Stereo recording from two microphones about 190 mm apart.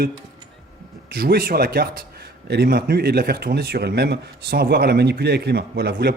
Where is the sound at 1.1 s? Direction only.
55° right (ahead or behind).